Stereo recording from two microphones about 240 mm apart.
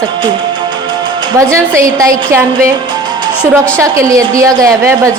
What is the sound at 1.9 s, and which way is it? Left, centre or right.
Speech, centre.